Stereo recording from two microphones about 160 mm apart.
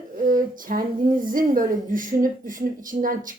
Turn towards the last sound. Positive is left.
turn(degrees=-60)  # may be behind; listen again after turning